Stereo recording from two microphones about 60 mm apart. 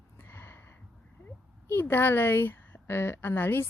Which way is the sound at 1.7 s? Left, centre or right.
Left.